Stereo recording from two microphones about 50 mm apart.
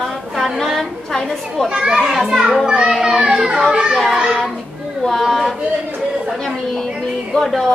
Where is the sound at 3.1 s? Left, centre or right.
Centre.